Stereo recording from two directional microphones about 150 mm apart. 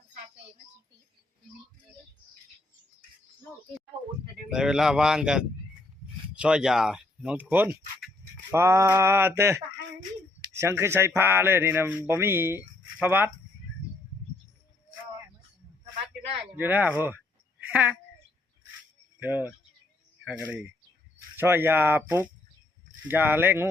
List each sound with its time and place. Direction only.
4.4 s speech: 5° right (ahead or behind)
16.6 s speech: 10° right (ahead or behind)
17.6 s a sound: 10° right (ahead or behind)
19.2 s speech: 10° right (ahead or behind)